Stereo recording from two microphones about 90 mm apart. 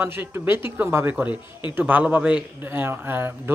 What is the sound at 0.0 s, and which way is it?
A man's voice, 25° right (ahead or behind).